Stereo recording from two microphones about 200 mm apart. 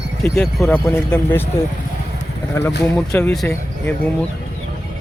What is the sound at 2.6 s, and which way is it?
Speech, 15° left (ahead or behind).